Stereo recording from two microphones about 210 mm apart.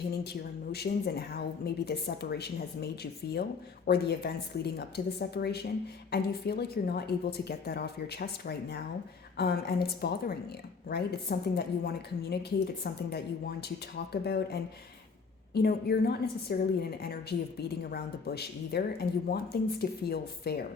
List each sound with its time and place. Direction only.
0.3 s a woman's voice: 50° left (ahead or behind)